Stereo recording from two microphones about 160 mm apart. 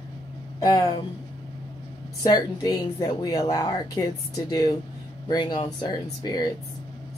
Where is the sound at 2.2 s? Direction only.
25° left (ahead or behind).